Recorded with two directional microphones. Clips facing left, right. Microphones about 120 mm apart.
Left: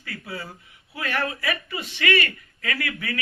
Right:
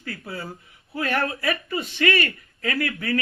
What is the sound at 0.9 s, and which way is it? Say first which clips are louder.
A man's voice: right 3 dB; 40° right (ahead or behind).